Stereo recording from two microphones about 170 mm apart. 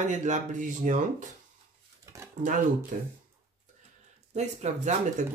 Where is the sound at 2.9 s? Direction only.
50° right (ahead or behind).